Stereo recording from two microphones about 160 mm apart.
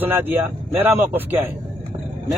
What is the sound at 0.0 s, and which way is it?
A man's voice, 10° right (ahead or behind).